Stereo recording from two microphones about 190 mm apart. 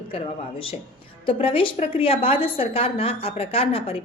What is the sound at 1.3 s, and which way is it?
A woman's voice, 30° left (ahead or behind).